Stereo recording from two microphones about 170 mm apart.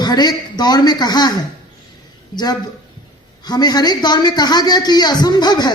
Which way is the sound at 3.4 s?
25° left (ahead or behind).